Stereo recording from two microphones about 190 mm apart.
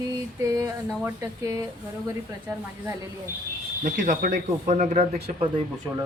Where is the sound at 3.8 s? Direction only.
45° right (ahead or behind).